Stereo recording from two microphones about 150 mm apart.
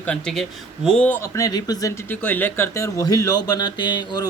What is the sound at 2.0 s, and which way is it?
Speech, 10° left (ahead or behind).